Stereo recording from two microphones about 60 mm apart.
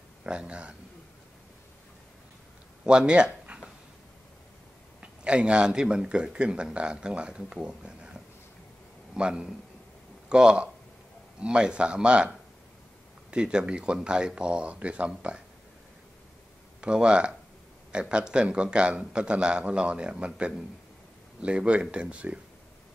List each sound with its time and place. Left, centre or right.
0.2 s speech: centre
2.8 s speech: centre
5.0 s speech: centre
16.8 s speech: centre